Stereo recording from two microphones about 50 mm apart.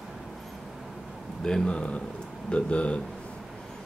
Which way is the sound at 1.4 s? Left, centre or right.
Centre.